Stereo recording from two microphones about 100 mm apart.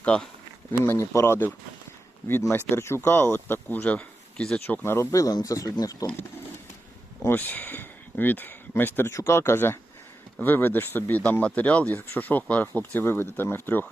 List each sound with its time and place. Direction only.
0.0 s speech: 10° left (ahead or behind)
0.7 s speech: 25° left (ahead or behind); by 4.6 s 10° left (ahead or behind)
4.6 s speech: 25° left (ahead or behind)
7.3 s speech: 15° left (ahead or behind)